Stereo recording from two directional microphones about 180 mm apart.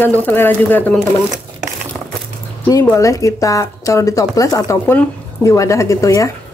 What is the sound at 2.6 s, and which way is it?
Speech, 15° left (ahead or behind).